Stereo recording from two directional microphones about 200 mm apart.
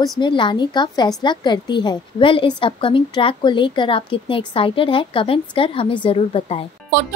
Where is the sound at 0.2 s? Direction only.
25° left (ahead or behind).